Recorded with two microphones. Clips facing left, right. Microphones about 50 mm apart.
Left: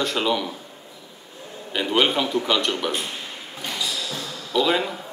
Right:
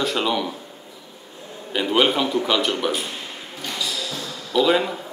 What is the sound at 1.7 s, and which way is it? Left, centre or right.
A man's voice, centre.